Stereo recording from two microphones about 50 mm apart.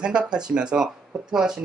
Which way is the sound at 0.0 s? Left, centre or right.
Centre.